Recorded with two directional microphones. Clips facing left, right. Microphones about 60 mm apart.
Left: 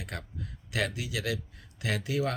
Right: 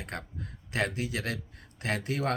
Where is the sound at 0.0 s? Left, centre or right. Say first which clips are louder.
Right 1 dB; right.